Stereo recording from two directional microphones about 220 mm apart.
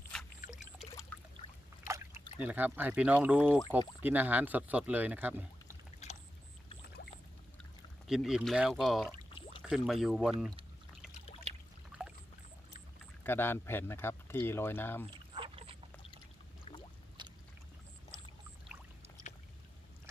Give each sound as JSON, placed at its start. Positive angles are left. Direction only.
{"t": 2.4, "sound": "speech", "side_deg": -5}
{"t": 6.0, "sound": "boat", "side_deg": 30}
{"t": 6.8, "sound": "pour", "side_deg": 45}
{"t": 8.0, "sound": "speech", "side_deg": 0}
{"t": 11.9, "sound": "pour", "side_deg": -5}
{"t": 13.2, "sound": "speech", "side_deg": 10}
{"t": 15.4, "sound": "dog", "side_deg": -25}
{"t": 17.2, "sound": "boat", "side_deg": -20}